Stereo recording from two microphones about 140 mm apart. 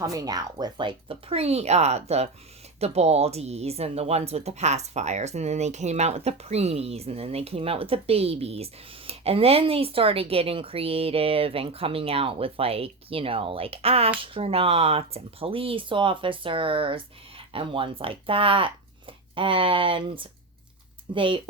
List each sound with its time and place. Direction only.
0.0 s speech: 25° right (ahead or behind)